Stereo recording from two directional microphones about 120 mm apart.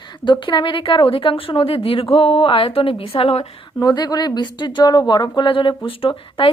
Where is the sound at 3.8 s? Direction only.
35° left (ahead or behind).